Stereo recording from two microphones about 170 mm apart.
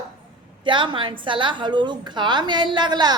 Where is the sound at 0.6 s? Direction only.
30° right (ahead or behind).